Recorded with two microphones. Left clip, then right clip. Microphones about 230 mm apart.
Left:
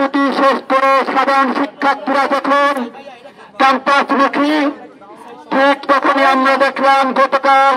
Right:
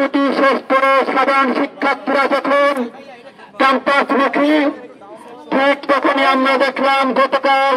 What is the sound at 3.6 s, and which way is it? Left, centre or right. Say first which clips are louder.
A man's voice: left 2 dB; left.